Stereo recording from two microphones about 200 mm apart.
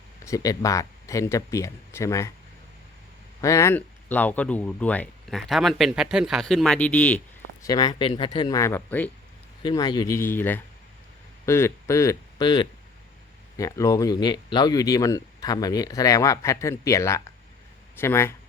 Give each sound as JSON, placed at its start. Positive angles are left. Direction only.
{"t": 0.3, "sound": "speech", "side_deg": 15}
{"t": 3.4, "sound": "speech", "side_deg": 15}
{"t": 7.6, "sound": "speech", "side_deg": 20}
{"t": 9.6, "sound": "speech", "side_deg": 20}